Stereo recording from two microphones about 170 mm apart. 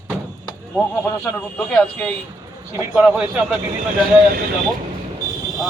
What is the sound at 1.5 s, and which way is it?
Speech, 5° left (ahead or behind).